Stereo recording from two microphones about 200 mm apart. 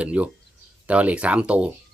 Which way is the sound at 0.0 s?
5° right (ahead or behind).